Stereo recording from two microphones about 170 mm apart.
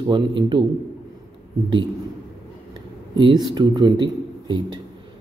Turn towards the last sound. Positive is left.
turn(degrees=-25)  # may be behind; listen again after turning